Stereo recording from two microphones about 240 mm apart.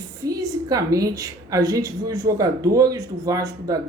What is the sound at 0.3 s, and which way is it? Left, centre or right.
A woman's voice, centre.